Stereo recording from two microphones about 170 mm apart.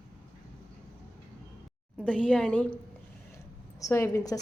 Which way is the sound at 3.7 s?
20° left (ahead or behind).